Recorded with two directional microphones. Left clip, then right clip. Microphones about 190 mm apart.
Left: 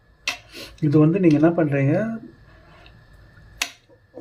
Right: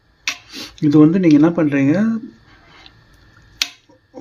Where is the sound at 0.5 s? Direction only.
55° right (ahead or behind).